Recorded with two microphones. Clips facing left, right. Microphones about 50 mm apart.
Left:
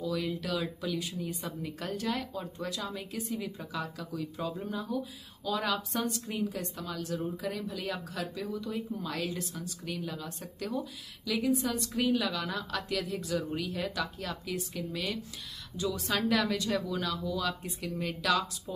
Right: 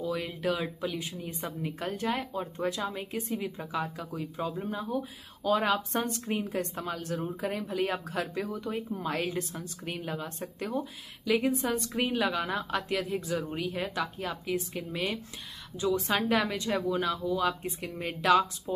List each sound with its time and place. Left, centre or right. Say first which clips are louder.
0.0 s a woman's voice: right 2 dB; right
5.4 s a woman's voice: right 5 dB; right